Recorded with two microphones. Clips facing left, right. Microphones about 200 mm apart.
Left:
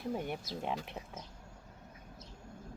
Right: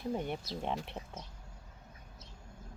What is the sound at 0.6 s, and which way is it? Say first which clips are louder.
Speech: right 1 dB; 5° left (ahead or behind).